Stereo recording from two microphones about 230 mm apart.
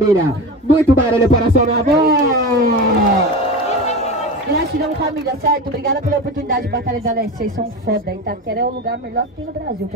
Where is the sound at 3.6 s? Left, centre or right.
Left.